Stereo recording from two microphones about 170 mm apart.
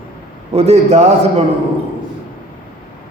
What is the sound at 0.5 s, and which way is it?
Speech, 40° right (ahead or behind).